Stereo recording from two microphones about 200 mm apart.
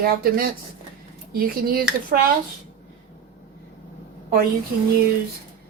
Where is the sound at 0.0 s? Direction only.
45° right (ahead or behind).